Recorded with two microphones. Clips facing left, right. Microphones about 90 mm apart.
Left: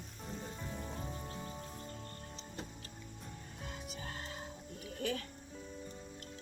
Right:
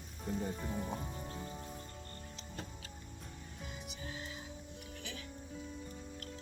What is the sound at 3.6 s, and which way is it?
Music, 60° left (ahead or behind).